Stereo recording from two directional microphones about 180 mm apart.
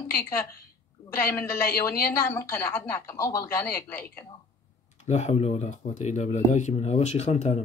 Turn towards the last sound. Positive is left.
turn(degrees=40)  # may be behind; listen again after turning